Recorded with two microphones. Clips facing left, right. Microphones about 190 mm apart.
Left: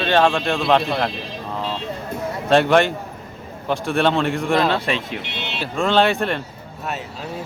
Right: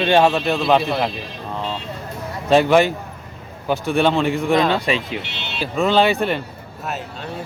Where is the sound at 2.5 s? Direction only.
Centre (ahead or behind).